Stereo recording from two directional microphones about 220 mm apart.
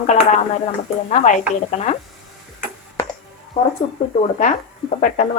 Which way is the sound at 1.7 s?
30° left (ahead or behind).